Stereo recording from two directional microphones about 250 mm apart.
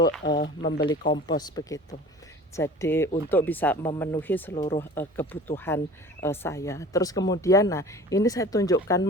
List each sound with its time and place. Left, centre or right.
0.4 s speech: left
0.9 s speech: centre
4.5 s speech: left
4.8 s speech: centre